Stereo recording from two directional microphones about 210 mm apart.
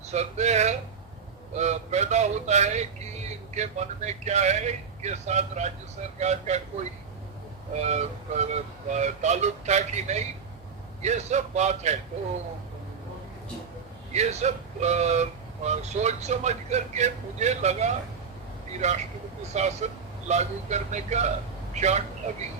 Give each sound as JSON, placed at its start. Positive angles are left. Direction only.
{"t": 0.1, "sound": "speech", "side_deg": -30}
{"t": 7.8, "sound": "speech", "side_deg": -35}
{"t": 14.1, "sound": "speech", "side_deg": -30}